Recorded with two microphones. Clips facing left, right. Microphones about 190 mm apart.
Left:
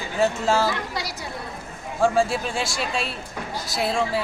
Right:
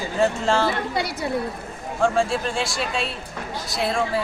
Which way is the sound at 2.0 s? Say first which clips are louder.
Even; 5° left (ahead or behind).